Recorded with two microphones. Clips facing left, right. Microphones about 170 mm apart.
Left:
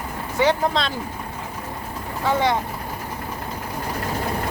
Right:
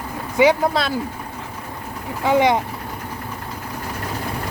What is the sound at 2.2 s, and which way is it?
Speech, 15° right (ahead or behind).